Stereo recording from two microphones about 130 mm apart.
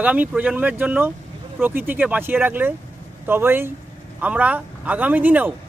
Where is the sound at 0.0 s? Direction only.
10° right (ahead or behind).